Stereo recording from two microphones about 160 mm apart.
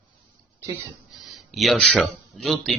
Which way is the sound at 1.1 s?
Centre (ahead or behind).